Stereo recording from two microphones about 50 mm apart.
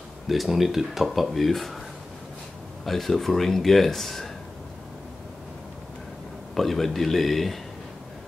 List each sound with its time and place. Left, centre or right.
0.3 s speech: centre
2.8 s speech: centre
6.5 s speech: centre